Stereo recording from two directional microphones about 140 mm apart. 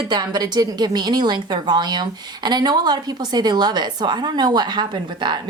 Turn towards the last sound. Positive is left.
turn(degrees=-35)  # may be behind; listen again after turning